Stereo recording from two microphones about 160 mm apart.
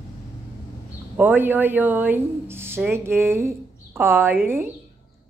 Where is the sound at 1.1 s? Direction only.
10° right (ahead or behind).